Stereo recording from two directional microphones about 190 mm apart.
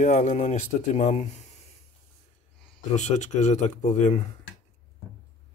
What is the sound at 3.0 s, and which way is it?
Speech, 40° left (ahead or behind).